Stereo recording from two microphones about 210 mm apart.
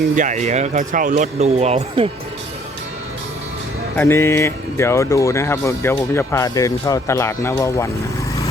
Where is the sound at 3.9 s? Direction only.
10° left (ahead or behind).